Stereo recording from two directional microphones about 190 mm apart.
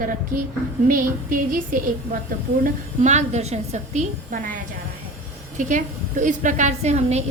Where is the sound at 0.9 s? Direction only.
50° right (ahead or behind).